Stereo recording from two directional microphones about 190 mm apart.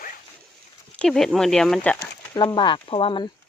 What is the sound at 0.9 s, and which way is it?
Speech, 5° left (ahead or behind).